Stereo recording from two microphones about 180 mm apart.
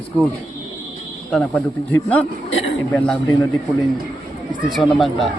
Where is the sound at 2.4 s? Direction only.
90° left.